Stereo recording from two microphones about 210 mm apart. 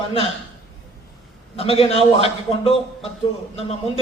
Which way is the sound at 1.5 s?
30° left (ahead or behind).